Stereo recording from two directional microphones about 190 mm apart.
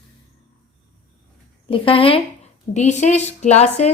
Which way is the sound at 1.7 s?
30° left (ahead or behind).